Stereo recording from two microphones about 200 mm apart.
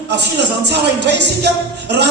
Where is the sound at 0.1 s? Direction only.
55° right (ahead or behind).